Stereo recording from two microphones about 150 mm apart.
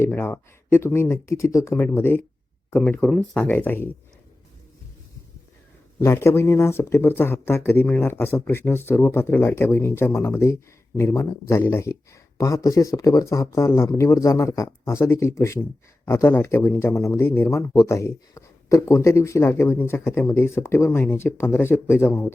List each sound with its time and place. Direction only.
0.0 s speech: 15° left (ahead or behind)
6.0 s speech: 20° left (ahead or behind)